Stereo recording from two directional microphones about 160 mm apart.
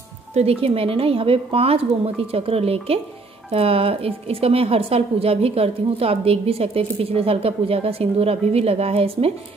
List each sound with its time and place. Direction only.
0.3 s a woman's voice: 40° right (ahead or behind)